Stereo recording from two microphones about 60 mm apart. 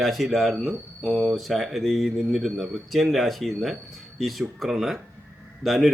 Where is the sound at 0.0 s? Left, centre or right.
Centre.